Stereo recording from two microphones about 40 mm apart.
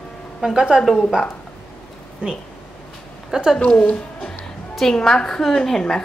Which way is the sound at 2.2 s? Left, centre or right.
Right.